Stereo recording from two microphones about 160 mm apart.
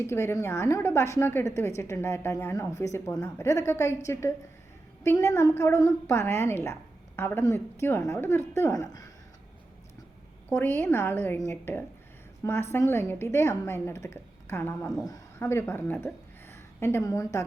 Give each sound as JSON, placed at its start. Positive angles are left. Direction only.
{"t": 0.1, "sound": "a woman's voice", "side_deg": 15}
{"t": 10.5, "sound": "a woman's voice", "side_deg": 10}
{"t": 15.0, "sound": "a woman's voice", "side_deg": 20}